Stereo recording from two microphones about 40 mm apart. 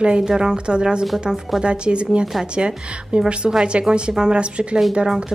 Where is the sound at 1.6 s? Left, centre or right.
Right.